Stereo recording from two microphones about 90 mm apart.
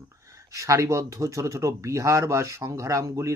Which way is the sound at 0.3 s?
35° right (ahead or behind).